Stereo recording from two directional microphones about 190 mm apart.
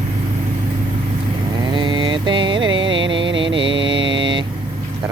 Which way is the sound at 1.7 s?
25° right (ahead or behind).